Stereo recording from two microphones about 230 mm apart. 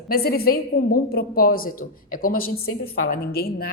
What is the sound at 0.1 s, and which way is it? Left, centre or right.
A woman's voice, left.